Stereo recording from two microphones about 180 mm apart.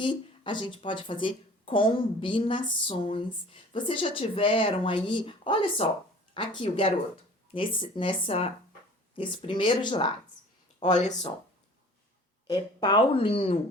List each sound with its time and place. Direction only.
0.0 s speech: 25° left (ahead or behind)
12.5 s speech: 25° left (ahead or behind)